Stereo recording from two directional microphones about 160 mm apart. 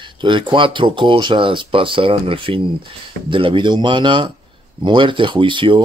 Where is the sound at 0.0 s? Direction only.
30° right (ahead or behind).